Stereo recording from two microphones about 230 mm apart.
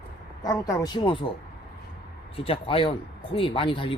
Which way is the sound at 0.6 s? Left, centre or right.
Centre.